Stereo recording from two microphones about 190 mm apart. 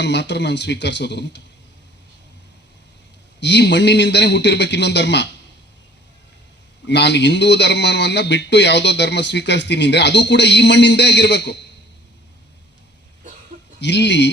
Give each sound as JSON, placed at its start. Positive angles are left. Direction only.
{"t": 0.0, "sound": "a man's voice", "side_deg": 65}
{"t": 3.4, "sound": "a man's voice", "side_deg": 65}
{"t": 6.8, "sound": "a man's voice", "side_deg": 65}
{"t": 13.7, "sound": "a man's voice", "side_deg": 65}